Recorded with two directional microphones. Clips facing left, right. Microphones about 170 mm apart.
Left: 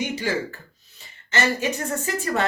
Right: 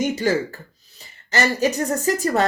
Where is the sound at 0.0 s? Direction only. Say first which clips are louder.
Right 5 dB; 45° right (ahead or behind).